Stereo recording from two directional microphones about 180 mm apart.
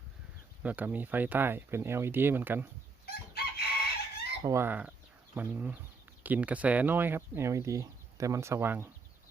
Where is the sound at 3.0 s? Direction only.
60° left (ahead or behind).